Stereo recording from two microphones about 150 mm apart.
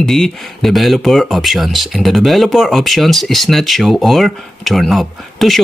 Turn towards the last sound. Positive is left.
turn(degrees=0)  # may be behind; listen again after turning